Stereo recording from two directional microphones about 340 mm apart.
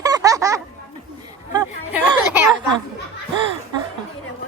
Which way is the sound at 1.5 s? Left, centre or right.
Centre.